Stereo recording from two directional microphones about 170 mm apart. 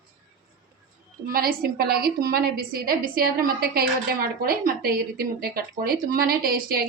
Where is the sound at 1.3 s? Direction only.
60° right (ahead or behind).